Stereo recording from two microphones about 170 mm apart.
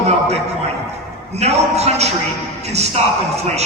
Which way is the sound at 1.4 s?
40° right (ahead or behind).